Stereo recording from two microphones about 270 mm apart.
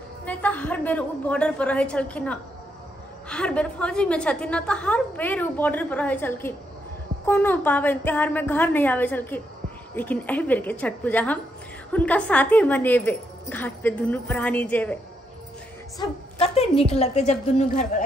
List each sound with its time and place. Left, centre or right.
0.2 s a woman's voice: centre
16.0 s a woman's voice: left